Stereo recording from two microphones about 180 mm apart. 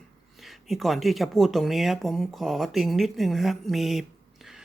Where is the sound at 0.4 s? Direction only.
Centre (ahead or behind).